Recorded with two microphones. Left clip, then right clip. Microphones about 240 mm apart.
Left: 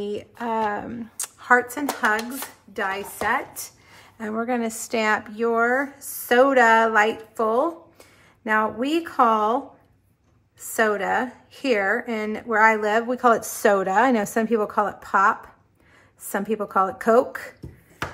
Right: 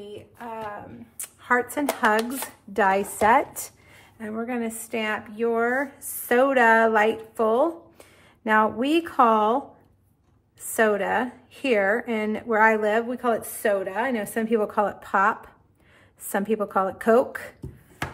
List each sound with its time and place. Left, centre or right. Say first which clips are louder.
0.0 s speech: left 9 dB; left
1.5 s a woman's voice: left 3 dB; centre
2.7 s chopping: right 6 dB; centre
3.9 s a woman's voice: left 5 dB; centre
10.7 s a woman's voice: even; centre